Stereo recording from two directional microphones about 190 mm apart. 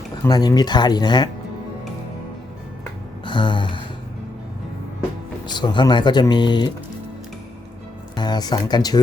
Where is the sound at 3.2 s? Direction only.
25° left (ahead or behind).